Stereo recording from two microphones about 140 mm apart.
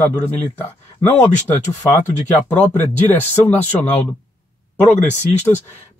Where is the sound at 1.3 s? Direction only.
55° left (ahead or behind).